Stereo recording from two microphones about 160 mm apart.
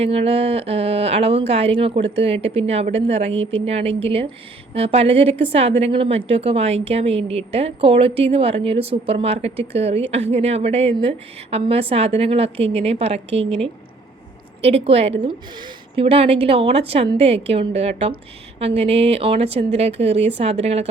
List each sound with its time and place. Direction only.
0.0 s a woman's voice: 40° right (ahead or behind)